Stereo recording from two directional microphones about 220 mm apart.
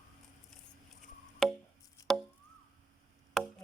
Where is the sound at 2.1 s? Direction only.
Centre (ahead or behind).